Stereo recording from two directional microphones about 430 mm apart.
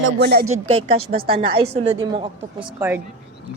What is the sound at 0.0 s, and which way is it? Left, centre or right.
A woman's voice, right.